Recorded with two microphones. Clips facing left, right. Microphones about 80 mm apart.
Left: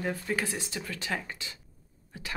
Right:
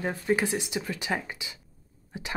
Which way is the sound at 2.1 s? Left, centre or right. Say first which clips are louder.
Right 4 dB; right.